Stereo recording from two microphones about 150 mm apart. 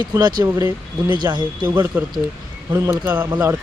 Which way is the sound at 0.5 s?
15° right (ahead or behind).